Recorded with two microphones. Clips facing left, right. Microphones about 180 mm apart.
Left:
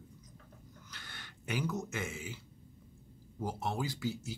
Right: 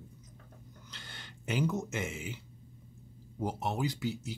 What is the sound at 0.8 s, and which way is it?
Speech, 25° right (ahead or behind).